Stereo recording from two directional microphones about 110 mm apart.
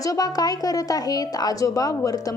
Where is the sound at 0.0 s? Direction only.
35° left (ahead or behind).